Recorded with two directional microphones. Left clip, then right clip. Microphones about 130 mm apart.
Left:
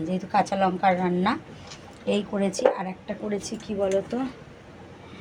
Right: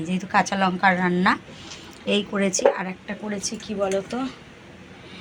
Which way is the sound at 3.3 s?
30° left (ahead or behind).